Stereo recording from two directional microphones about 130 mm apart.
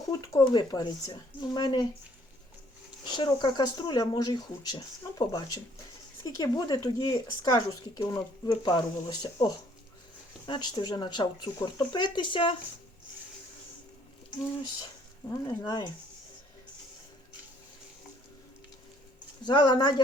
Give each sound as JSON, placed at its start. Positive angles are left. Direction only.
{"t": 0.1, "sound": "speech", "side_deg": 30}
{"t": 3.1, "sound": "speech", "side_deg": 35}
{"t": 15.3, "sound": "speech", "side_deg": 25}
{"t": 19.4, "sound": "speech", "side_deg": 35}